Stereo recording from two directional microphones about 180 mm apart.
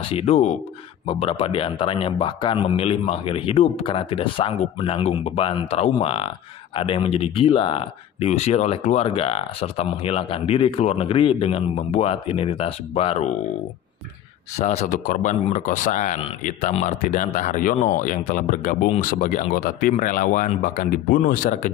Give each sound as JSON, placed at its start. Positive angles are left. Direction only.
{"t": 0.0, "sound": "speech", "side_deg": 30}
{"t": 14.6, "sound": "speech", "side_deg": 40}